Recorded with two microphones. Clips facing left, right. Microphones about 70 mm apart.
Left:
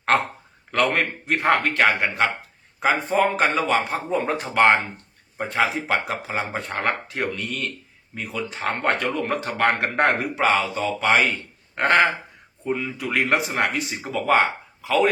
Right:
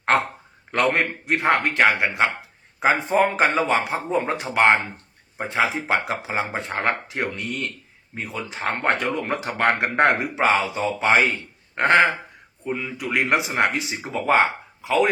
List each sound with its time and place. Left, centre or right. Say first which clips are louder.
0.7 s a man's voice: right 1 dB; centre
11.7 s a sound: right 1 dB; centre
12.6 s speech: left 1 dB; centre